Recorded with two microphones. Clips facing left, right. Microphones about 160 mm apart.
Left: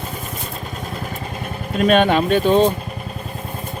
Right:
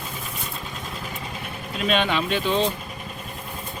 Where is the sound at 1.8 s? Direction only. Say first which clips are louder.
Left 8 dB; 50° left (ahead or behind).